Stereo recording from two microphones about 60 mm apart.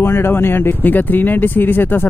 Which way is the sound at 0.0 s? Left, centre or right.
Left.